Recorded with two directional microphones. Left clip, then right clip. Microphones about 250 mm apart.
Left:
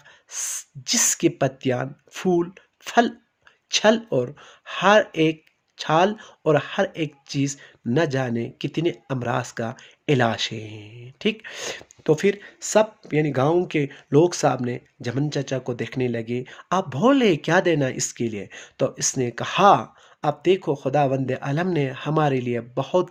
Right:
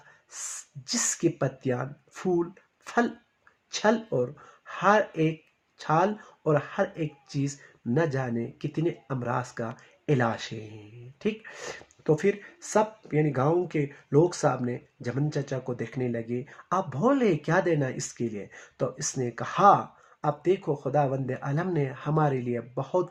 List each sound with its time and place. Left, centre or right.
0.9 s speech: left